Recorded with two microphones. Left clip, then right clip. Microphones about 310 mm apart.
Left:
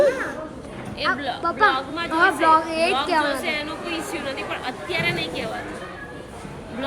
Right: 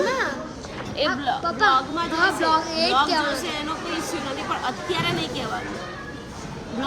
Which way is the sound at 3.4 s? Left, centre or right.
Centre.